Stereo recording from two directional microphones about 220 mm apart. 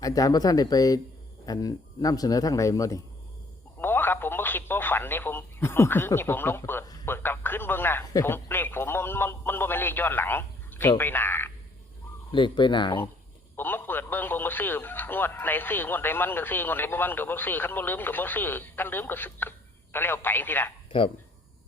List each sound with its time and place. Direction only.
0.0 s speech: 15° left (ahead or behind)
12.3 s speech: 20° left (ahead or behind)
13.6 s speech: 10° left (ahead or behind)